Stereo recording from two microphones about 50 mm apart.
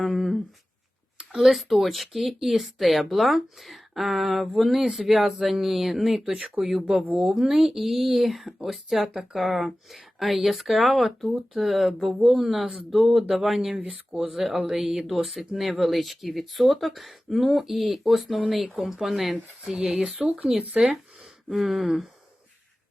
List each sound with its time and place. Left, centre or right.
0.0 s humming: centre
1.2 s speech: centre
7.1 s speech: right
7.3 s speech: centre
13.7 s speech: centre
14.1 s speech: centre